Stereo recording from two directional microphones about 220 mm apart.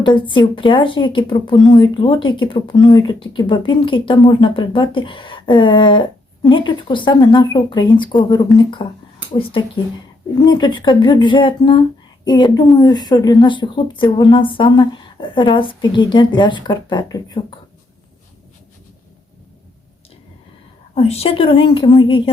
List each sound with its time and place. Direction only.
0.0 s a woman's voice: 20° left (ahead or behind)
20.9 s a woman's voice: 25° left (ahead or behind)